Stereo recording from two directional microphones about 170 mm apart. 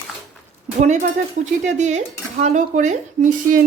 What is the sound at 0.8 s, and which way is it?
Speech, 45° right (ahead or behind).